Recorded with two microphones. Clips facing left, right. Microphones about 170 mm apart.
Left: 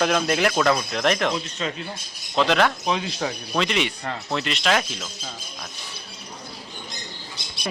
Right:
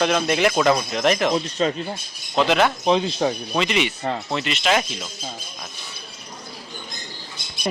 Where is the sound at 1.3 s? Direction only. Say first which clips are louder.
Right 6 dB; 35° right (ahead or behind).